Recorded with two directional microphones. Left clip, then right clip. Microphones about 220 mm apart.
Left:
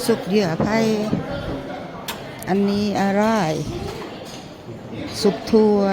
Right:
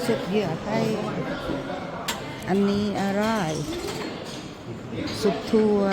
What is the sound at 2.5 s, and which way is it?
Speech, 15° left (ahead or behind).